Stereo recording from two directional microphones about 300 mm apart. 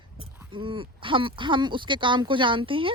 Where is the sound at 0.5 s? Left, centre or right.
Centre.